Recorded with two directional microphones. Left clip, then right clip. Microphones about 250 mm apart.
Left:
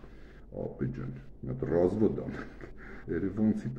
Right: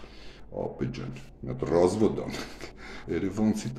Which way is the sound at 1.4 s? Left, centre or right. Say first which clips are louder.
Right 4 dB; right.